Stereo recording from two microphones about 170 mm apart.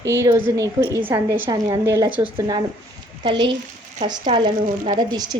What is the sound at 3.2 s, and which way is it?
Speech, 90° right.